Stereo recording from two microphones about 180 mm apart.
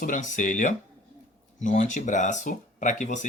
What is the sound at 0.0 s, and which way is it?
Speech, 45° left (ahead or behind).